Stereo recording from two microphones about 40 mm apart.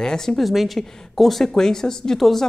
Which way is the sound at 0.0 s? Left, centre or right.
Centre.